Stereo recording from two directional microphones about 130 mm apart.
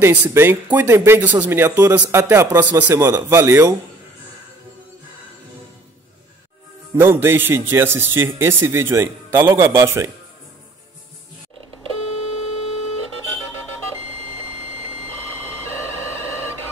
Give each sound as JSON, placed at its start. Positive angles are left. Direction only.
{"t": 0.0, "sound": "speech", "side_deg": -15}
{"t": 7.0, "sound": "speech", "side_deg": -15}